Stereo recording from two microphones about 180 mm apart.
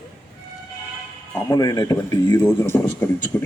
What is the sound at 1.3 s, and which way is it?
Speech, 20° left (ahead or behind).